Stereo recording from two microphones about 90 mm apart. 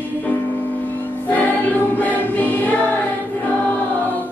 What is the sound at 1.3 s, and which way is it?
Music, 20° left (ahead or behind).